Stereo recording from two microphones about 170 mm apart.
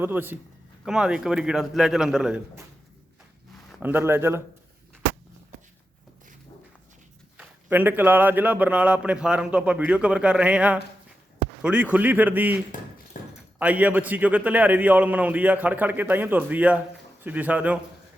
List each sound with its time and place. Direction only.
0.0 s a man's voice: 10° right (ahead or behind)
3.7 s speech: 5° right (ahead or behind)
7.3 s a man's voice: 10° right (ahead or behind)
13.2 s a sound: 55° left (ahead or behind)
13.6 s a man's voice: 10° right (ahead or behind)